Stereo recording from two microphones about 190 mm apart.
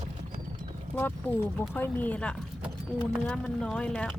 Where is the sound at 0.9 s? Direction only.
10° left (ahead or behind).